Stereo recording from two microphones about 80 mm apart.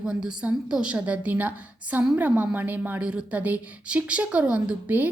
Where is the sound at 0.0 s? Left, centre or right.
Centre.